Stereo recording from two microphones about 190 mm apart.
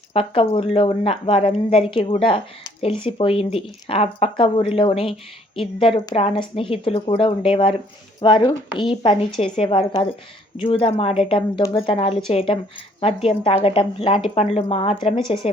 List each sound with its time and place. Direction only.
0.1 s a woman's voice: 30° left (ahead or behind)